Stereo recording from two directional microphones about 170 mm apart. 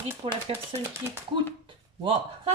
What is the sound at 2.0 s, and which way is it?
Speech, 35° right (ahead or behind).